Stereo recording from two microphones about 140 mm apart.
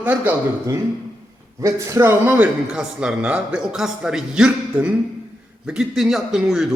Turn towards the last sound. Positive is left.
turn(degrees=0)  # may be behind; listen again after turning